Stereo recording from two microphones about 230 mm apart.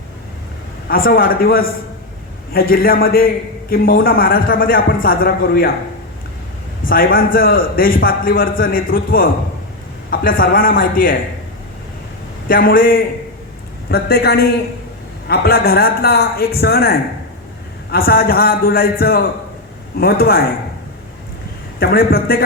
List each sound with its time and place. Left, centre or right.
0.9 s a man's voice: left
6.8 s a man's voice: left
12.5 s a man's voice: left
21.8 s a man's voice: left